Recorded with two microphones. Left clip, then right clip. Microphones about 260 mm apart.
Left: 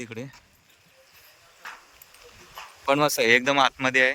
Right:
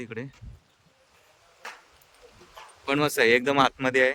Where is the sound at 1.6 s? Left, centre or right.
Right.